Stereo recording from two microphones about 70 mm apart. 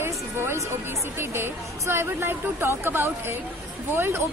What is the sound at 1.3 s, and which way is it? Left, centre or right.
A woman's voice, right.